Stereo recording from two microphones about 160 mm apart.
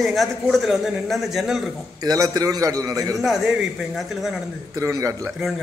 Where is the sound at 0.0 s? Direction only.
Centre (ahead or behind).